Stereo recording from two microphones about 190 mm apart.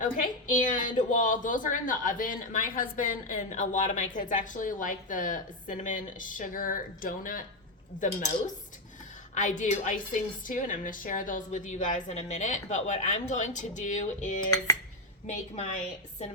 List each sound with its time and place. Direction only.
0.0 s a woman's voice: 45° left (ahead or behind)
9.3 s a woman's voice: 40° left (ahead or behind)